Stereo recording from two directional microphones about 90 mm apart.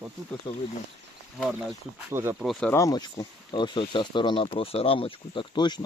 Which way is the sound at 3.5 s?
60° left (ahead or behind).